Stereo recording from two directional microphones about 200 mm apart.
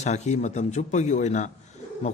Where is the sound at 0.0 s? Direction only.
35° left (ahead or behind).